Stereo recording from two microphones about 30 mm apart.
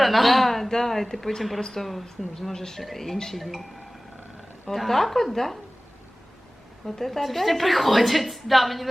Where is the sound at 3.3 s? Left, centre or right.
Centre.